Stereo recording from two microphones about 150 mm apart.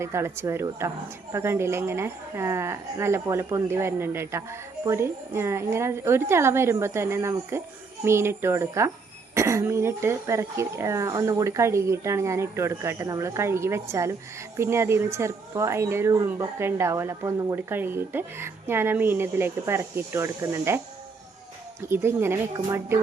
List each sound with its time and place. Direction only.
0.0 s speech: 15° right (ahead or behind)